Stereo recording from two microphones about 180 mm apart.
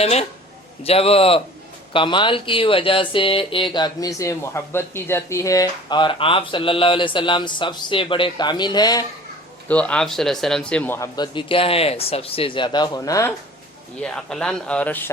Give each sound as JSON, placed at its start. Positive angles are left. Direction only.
{"t": 0.0, "sound": "a man's voice", "side_deg": 35}
{"t": 9.6, "sound": "a man's voice", "side_deg": 5}
{"t": 11.2, "sound": "speech", "side_deg": 30}
{"t": 14.0, "sound": "speech", "side_deg": 5}